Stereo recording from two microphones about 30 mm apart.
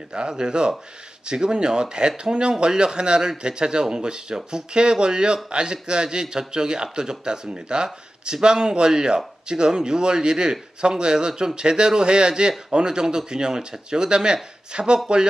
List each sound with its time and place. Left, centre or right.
0.1 s speech: right